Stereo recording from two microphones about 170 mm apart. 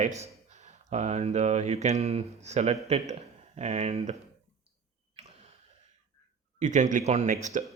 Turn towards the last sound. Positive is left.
turn(degrees=-45)  # may be behind; listen again after turning